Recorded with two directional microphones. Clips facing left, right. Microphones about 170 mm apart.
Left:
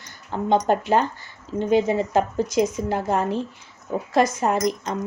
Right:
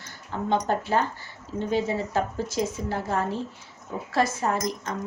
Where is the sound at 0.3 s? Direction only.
20° left (ahead or behind).